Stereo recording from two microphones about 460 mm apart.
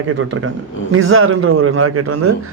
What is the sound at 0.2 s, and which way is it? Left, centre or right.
A man's voice, right.